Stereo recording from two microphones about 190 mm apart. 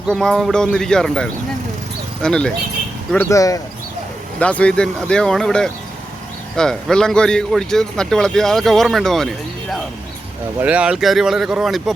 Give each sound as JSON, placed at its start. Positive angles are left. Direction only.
{"t": 0.1, "sound": "a man's voice", "side_deg": 5}
{"t": 4.4, "sound": "a man's voice", "side_deg": 5}